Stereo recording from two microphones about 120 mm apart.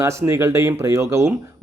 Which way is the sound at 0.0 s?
25° right (ahead or behind).